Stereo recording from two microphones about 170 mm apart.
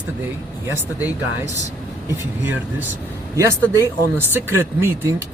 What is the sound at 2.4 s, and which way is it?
Speech, 10° right (ahead or behind).